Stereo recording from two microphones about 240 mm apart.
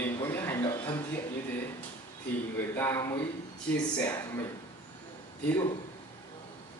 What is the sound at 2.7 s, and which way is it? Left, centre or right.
Speech, centre.